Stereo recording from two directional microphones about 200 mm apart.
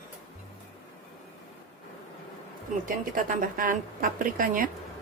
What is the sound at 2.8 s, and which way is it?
A woman's voice, 45° right (ahead or behind).